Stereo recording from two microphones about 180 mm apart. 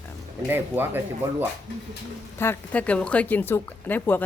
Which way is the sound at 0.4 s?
10° right (ahead or behind).